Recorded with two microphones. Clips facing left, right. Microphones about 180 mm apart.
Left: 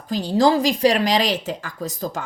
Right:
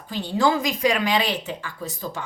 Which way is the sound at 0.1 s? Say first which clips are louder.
Left 4 dB; 40° left (ahead or behind).